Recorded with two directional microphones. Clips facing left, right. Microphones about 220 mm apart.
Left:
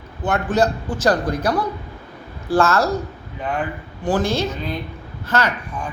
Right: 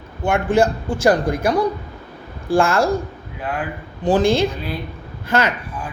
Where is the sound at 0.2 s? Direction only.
10° right (ahead or behind).